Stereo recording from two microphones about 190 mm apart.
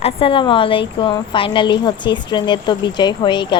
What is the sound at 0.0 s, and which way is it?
A woman's voice, 30° left (ahead or behind).